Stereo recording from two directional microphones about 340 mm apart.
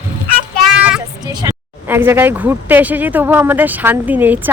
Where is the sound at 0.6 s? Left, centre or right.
Centre.